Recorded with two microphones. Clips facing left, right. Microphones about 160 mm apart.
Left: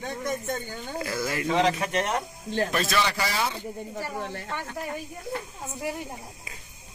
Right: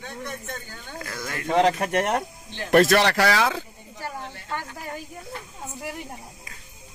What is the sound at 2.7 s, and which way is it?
Speech, 70° right (ahead or behind).